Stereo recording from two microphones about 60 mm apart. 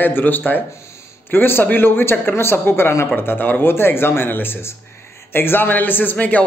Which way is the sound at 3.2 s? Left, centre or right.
Left.